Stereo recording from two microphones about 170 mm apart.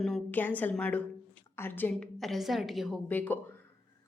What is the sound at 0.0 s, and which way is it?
A woman's voice, 5° left (ahead or behind).